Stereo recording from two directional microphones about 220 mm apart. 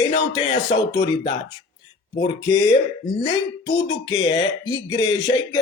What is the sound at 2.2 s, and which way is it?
Speech, 15° left (ahead or behind).